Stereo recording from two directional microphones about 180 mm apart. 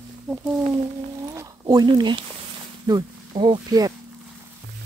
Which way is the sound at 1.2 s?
15° right (ahead or behind).